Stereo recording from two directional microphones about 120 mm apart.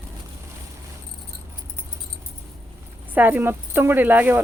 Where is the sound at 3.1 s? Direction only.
15° right (ahead or behind).